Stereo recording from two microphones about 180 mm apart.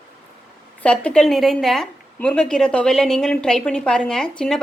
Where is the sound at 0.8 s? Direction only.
5° left (ahead or behind).